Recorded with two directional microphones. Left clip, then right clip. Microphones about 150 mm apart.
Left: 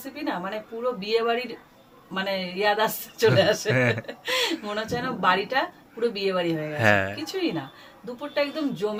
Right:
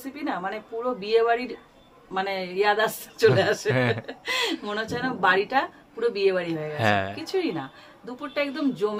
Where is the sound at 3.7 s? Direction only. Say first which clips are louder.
Left 1 dB; centre (ahead or behind).